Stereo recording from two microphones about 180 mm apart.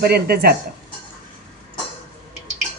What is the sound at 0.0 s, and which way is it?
Speech, 60° right (ahead or behind).